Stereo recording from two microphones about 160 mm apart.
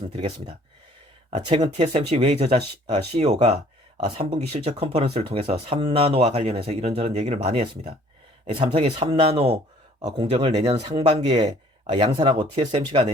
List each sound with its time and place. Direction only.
0.1 s speech: 40° right (ahead or behind)
1.7 s speech: 40° right (ahead or behind)